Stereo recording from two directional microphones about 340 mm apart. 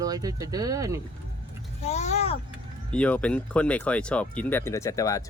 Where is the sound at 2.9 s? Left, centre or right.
Centre.